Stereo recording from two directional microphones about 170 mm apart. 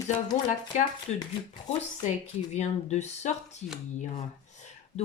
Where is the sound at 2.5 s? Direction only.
40° left (ahead or behind).